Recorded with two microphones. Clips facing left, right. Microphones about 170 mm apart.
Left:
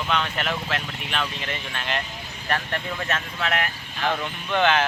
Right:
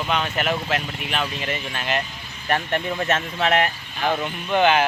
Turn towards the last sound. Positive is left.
turn(degrees=-10)  # may be behind; listen again after turning